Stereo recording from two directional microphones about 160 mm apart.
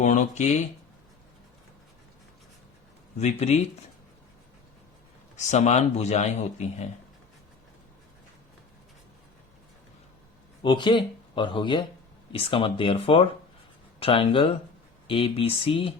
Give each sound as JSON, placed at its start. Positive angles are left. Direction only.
{"t": 0.0, "sound": "speech", "side_deg": 50}
{"t": 3.2, "sound": "speech", "side_deg": 45}
{"t": 5.5, "sound": "speech", "side_deg": 45}
{"t": 10.6, "sound": "speech", "side_deg": 30}